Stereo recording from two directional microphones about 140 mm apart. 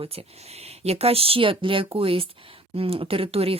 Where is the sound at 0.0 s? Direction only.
45° right (ahead or behind).